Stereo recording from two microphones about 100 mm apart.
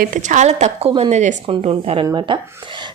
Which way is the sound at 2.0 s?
50° right (ahead or behind).